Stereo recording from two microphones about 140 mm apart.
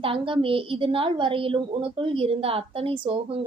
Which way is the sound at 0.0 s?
40° right (ahead or behind).